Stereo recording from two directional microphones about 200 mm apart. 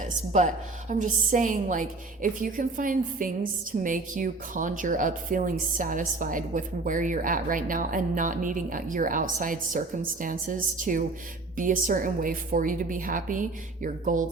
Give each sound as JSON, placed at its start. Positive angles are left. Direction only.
{"t": 0.0, "sound": "a woman's voice", "side_deg": -35}